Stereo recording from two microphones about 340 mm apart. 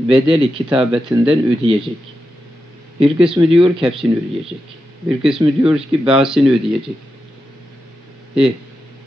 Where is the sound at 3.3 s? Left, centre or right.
Centre.